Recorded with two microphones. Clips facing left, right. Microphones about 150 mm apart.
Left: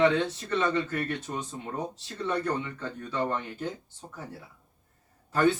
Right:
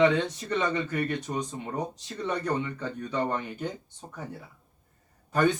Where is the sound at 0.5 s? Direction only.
15° right (ahead or behind).